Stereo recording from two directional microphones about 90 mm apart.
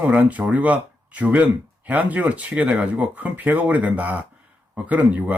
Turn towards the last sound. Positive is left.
turn(degrees=-15)  # may be behind; listen again after turning